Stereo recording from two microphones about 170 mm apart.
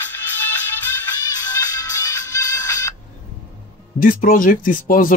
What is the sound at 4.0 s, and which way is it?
Speech, 55° left (ahead or behind).